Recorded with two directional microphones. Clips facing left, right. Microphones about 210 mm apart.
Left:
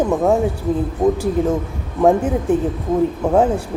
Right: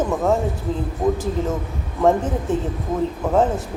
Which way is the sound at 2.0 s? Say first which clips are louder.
Left 3 dB; 15° left (ahead or behind).